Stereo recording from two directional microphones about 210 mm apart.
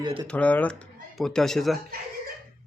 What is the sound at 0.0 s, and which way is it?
Speech, 20° right (ahead or behind).